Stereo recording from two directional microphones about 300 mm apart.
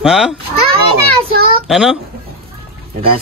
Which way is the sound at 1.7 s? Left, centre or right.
Centre.